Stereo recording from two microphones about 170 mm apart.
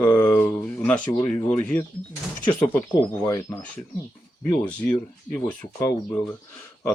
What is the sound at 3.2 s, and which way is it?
Speech, 15° left (ahead or behind).